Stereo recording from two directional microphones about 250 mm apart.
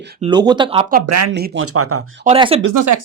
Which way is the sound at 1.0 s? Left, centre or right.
Right.